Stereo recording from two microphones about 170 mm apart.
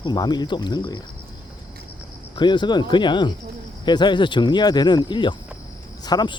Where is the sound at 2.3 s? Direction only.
25° left (ahead or behind).